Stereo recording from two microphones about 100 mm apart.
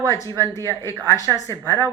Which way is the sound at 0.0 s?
30° left (ahead or behind).